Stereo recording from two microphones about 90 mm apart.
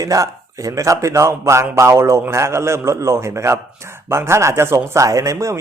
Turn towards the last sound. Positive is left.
turn(degrees=-35)  # may be behind; listen again after turning